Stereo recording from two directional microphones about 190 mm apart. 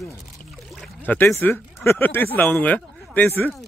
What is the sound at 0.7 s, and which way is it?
Speech, 5° left (ahead or behind).